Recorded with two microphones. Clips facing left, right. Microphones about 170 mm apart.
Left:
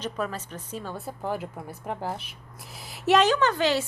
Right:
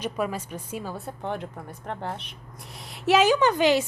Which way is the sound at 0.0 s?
10° right (ahead or behind).